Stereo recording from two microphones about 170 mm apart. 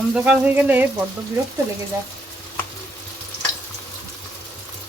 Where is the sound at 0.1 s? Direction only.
5° right (ahead or behind).